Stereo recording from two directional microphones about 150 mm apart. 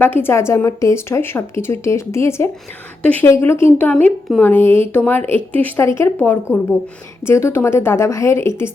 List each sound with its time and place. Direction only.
0.0 s speech: 15° left (ahead or behind)